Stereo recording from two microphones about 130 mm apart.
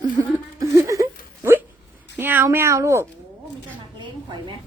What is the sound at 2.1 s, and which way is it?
Speech, 15° right (ahead or behind).